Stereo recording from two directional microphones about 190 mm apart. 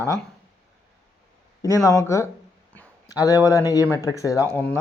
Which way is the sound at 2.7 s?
10° left (ahead or behind).